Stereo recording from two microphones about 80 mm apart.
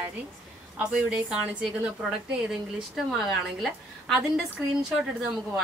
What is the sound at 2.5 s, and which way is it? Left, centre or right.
A woman's voice, centre.